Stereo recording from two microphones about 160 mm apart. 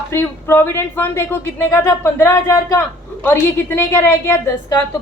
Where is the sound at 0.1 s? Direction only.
15° left (ahead or behind).